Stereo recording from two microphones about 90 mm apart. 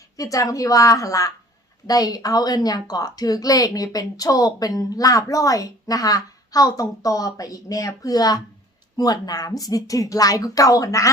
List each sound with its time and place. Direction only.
0.2 s a woman's voice: 40° left (ahead or behind)